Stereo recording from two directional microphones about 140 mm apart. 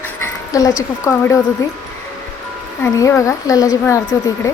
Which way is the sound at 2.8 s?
20° left (ahead or behind).